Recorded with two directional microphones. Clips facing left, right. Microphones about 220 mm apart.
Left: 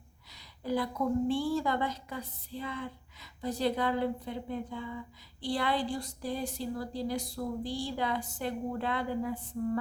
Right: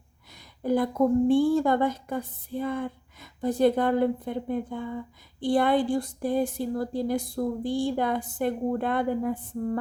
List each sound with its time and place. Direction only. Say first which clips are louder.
0.3 s a woman's voice: right 7 dB; 50° right (ahead or behind)